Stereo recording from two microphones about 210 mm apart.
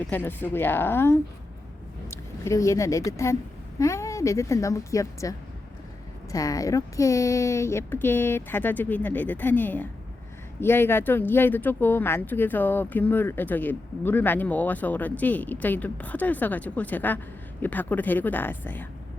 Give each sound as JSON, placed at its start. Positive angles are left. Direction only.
{"t": 0.1, "sound": "speech", "side_deg": 10}
{"t": 6.3, "sound": "speech", "side_deg": 15}